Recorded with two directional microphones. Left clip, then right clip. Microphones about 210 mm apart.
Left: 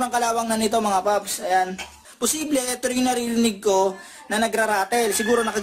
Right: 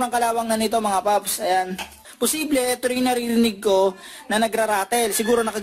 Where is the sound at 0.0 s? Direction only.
35° right (ahead or behind).